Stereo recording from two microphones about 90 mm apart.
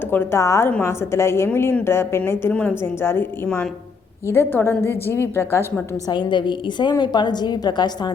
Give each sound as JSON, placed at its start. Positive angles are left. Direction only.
{"t": 0.1, "sound": "a woman's voice", "side_deg": 25}
{"t": 2.5, "sound": "a woman's voice", "side_deg": 15}
{"t": 2.8, "sound": "a woman's voice", "side_deg": 25}
{"t": 6.1, "sound": "a woman's voice", "side_deg": 60}